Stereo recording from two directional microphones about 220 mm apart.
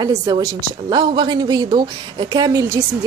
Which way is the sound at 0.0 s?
15° right (ahead or behind).